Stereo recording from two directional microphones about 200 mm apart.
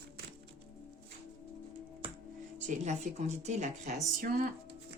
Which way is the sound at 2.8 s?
35° right (ahead or behind).